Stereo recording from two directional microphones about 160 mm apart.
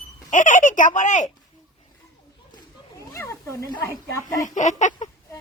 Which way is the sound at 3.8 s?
20° left (ahead or behind).